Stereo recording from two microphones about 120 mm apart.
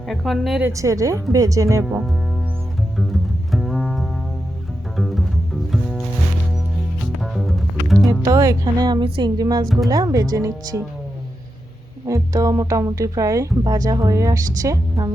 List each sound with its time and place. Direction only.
0.1 s a woman's voice: centre (ahead or behind)
0.7 s speech: 25° right (ahead or behind)
1.8 s a woman's voice: 5° right (ahead or behind)
3.0 s double bass: centre (ahead or behind)
4.9 s music: centre (ahead or behind)
7.2 s music: centre (ahead or behind)
8.2 s a woman's voice: 30° right (ahead or behind)
12.0 s speech: 30° right (ahead or behind)